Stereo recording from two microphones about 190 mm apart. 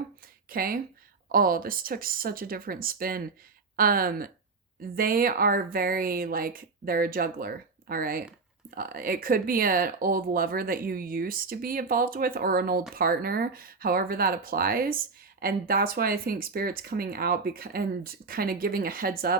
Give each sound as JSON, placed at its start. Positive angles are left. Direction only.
{"t": 0.5, "sound": "speech", "side_deg": -50}